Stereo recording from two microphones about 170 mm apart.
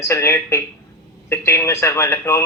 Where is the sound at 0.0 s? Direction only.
15° left (ahead or behind).